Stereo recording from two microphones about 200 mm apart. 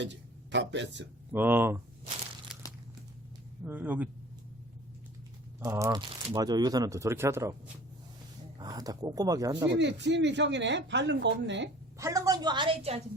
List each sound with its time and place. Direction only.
0.0 s a man's voice: 60° right (ahead or behind)
1.3 s speech: 10° right (ahead or behind)
2.5 s crumpling: centre (ahead or behind)
3.7 s speech: 10° right (ahead or behind)
5.5 s speech: 10° right (ahead or behind)
8.5 s speech: 20° right (ahead or behind)
9.7 s speech: 60° right (ahead or behind)
11.9 s speech: 15° right (ahead or behind)